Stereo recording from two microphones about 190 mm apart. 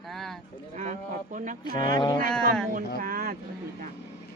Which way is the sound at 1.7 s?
25° left (ahead or behind).